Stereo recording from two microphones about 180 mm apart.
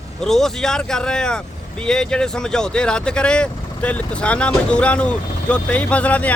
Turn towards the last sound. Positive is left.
turn(degrees=10)  # may be behind; listen again after turning